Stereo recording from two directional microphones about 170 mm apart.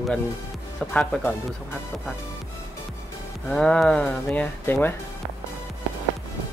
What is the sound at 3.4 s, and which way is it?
Speech, 5° left (ahead or behind).